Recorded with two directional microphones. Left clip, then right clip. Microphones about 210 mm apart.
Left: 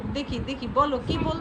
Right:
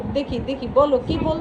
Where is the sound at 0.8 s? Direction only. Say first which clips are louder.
Right 6 dB; 20° left (ahead or behind).